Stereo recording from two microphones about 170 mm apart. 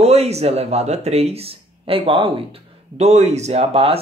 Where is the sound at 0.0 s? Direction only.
40° right (ahead or behind).